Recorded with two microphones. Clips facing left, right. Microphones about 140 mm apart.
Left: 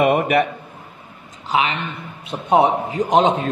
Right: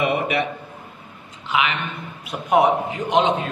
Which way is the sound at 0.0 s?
50° left (ahead or behind).